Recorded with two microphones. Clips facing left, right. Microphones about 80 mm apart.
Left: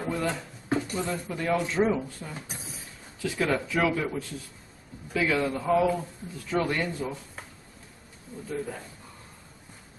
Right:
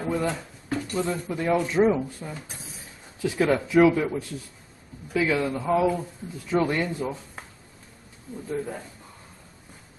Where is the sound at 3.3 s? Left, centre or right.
Centre.